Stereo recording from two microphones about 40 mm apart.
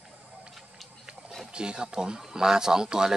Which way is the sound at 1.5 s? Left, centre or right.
Right.